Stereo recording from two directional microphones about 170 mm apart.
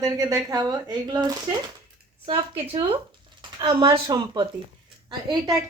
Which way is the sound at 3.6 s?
25° right (ahead or behind).